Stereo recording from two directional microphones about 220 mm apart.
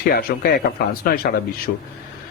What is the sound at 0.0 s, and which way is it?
A man's voice, 40° left (ahead or behind).